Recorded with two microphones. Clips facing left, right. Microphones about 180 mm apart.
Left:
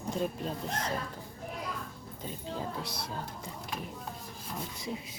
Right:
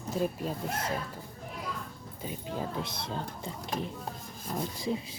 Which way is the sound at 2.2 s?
15° right (ahead or behind).